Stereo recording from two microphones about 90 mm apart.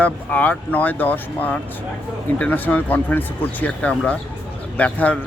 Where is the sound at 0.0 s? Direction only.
20° left (ahead or behind).